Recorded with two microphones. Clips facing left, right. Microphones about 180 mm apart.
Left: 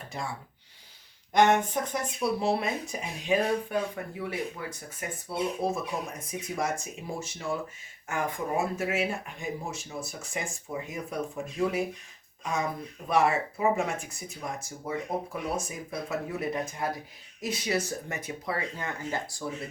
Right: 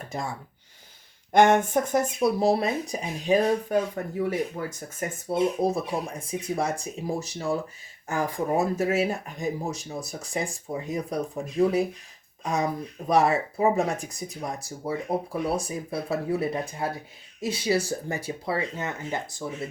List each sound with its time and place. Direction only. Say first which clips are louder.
1.3 s speech: right 4 dB; 50° right (ahead or behind); by 19.4 s 20° right (ahead or behind)